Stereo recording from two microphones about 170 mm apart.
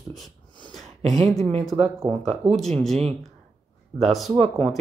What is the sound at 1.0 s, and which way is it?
Speech, 40° right (ahead or behind).